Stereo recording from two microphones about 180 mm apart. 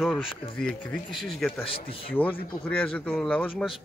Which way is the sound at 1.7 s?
30° left (ahead or behind).